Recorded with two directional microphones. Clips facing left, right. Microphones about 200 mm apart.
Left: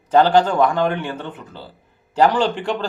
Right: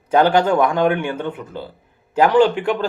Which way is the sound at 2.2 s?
10° right (ahead or behind).